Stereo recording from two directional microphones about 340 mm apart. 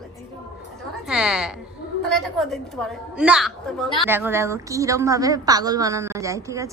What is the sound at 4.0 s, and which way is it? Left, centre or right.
A woman's voice, centre.